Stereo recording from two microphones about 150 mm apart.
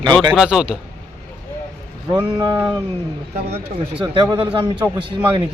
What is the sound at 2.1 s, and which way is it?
Speech, 30° right (ahead or behind).